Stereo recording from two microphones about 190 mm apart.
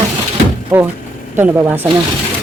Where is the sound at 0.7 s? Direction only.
10° right (ahead or behind).